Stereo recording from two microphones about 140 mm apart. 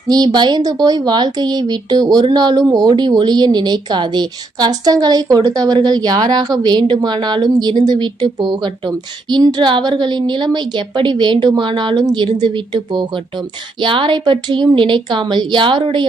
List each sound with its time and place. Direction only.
0.1 s a woman's voice: 30° right (ahead or behind)